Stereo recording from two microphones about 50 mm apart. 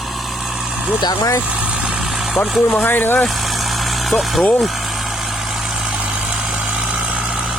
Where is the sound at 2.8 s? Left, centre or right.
Left.